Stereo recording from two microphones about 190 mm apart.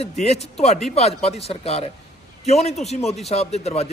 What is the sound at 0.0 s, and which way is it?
A man's voice, 35° left (ahead or behind).